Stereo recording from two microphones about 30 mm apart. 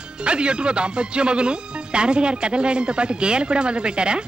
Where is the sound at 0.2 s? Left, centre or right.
Right.